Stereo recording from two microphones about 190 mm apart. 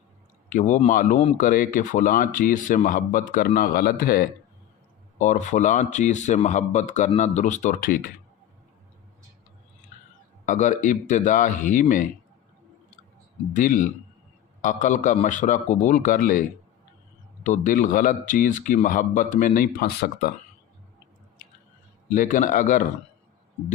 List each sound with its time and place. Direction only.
0.5 s speech: 40° left (ahead or behind)
5.2 s speech: 40° left (ahead or behind)
10.4 s speech: 40° left (ahead or behind)
13.5 s speech: 40° left (ahead or behind)
17.4 s speech: 40° left (ahead or behind)
22.1 s speech: 45° left (ahead or behind)